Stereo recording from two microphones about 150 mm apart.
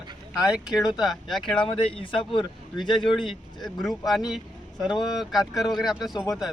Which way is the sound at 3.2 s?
Centre (ahead or behind).